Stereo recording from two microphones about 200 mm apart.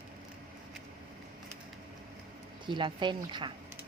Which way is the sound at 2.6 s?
25° right (ahead or behind).